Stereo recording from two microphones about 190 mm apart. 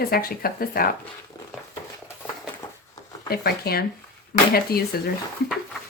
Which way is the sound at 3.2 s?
55° left (ahead or behind).